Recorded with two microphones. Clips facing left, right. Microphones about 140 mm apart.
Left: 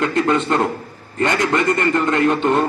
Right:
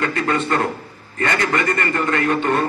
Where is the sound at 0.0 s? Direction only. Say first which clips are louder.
Left 3 dB; 20° left (ahead or behind).